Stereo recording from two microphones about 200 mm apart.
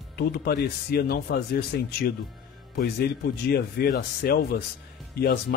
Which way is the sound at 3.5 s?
50° left (ahead or behind).